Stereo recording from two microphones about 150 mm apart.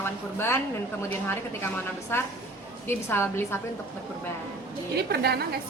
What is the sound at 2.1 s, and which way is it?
A woman's voice, 15° left (ahead or behind).